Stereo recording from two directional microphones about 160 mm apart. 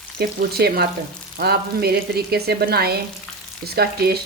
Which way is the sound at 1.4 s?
85° right.